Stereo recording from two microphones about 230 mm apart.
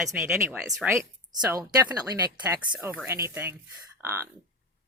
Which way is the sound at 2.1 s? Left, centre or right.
Centre.